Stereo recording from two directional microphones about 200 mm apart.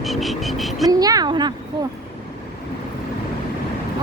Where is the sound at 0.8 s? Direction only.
20° right (ahead or behind).